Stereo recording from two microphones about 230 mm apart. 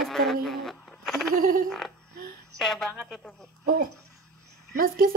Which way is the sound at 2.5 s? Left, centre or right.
Centre.